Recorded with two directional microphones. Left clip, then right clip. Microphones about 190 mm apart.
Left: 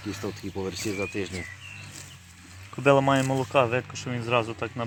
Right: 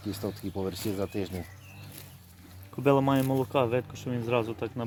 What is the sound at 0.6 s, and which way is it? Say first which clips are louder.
Speech: left 2 dB; 55° right (ahead or behind).